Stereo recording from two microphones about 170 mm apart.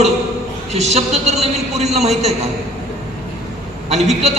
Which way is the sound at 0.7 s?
40° right (ahead or behind).